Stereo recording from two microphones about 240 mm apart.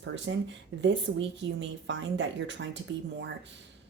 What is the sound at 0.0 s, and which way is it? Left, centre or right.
Speech, right.